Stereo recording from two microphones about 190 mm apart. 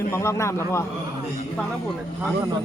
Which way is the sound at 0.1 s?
15° left (ahead or behind).